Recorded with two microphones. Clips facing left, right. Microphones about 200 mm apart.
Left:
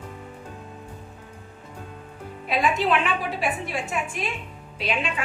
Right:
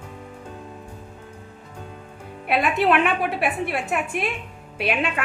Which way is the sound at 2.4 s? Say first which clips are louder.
Right 3 dB; 65° right (ahead or behind).